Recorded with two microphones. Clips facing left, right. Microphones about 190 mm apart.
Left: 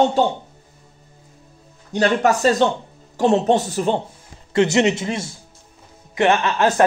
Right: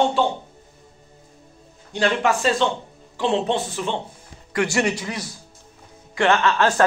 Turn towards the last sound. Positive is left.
turn(degrees=20)  # may be behind; listen again after turning